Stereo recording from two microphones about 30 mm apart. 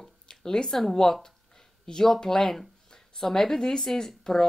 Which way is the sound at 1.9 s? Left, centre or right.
Left.